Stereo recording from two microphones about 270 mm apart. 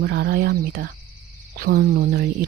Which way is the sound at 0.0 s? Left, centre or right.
Right.